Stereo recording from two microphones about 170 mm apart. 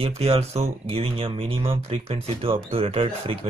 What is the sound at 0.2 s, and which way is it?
Speech, 35° right (ahead or behind).